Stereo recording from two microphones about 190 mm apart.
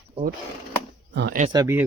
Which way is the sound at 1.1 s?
60° right (ahead or behind).